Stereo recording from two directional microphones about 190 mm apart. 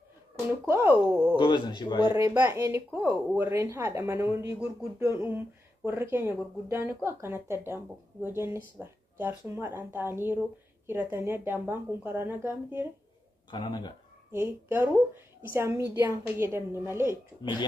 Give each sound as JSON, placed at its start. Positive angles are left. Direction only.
{"t": 0.7, "sound": "speech", "side_deg": -10}
{"t": 1.4, "sound": "speech", "side_deg": 25}
{"t": 2.1, "sound": "speech", "side_deg": -15}
{"t": 13.5, "sound": "speech", "side_deg": 25}
{"t": 14.3, "sound": "speech", "side_deg": -10}